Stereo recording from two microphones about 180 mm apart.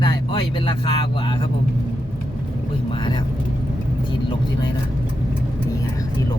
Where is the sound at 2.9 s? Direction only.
25° left (ahead or behind).